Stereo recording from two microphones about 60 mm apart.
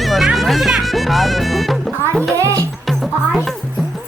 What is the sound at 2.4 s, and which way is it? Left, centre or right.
Music, right.